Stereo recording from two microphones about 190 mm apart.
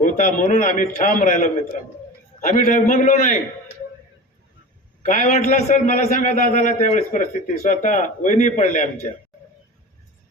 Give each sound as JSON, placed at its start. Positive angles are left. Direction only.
{"t": 0.0, "sound": "a man's voice", "side_deg": 40}
{"t": 5.0, "sound": "a man's voice", "side_deg": 40}